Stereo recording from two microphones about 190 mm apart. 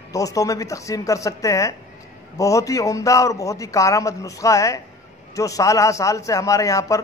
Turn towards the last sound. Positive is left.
turn(degrees=15)  # may be behind; listen again after turning